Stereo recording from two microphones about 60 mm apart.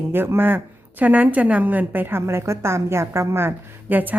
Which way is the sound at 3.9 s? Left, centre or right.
Right.